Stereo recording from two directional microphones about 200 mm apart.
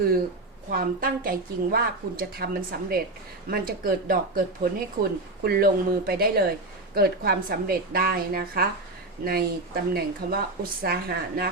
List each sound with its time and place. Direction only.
0.7 s a woman's voice: 45° right (ahead or behind)